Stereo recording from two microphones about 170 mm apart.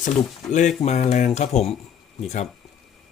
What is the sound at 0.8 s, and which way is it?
Speech, 40° left (ahead or behind).